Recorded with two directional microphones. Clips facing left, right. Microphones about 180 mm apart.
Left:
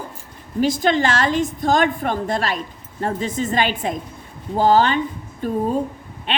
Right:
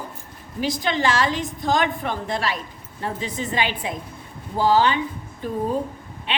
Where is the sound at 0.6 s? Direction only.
45° left (ahead or behind).